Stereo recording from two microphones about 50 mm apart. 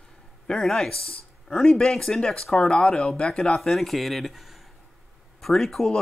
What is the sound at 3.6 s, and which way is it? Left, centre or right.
Speech, centre.